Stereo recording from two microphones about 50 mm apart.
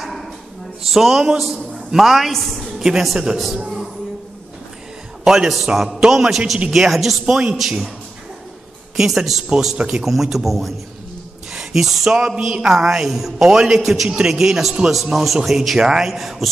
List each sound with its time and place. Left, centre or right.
0.0 s a sound: centre
0.8 s a woman's voice: centre
5.2 s a woman's voice: centre
8.9 s a man's voice: centre
9.8 s speech: centre
10.0 s a woman's voice: centre
11.5 s a sound: centre
12.6 s a man's voice: centre